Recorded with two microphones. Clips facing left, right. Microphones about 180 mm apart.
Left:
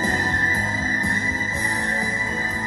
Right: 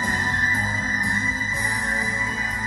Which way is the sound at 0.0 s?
25° left (ahead or behind).